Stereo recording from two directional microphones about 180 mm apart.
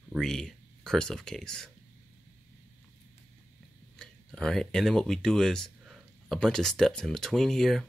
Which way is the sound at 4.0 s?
5° left (ahead or behind).